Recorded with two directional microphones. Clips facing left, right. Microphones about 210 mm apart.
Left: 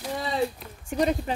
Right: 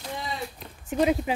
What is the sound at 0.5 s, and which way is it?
Speech, 5° right (ahead or behind).